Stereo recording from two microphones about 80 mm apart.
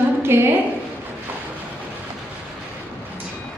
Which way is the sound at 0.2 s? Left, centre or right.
Right.